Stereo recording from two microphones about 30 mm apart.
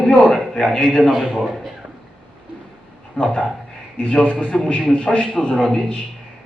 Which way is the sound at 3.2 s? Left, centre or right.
Left.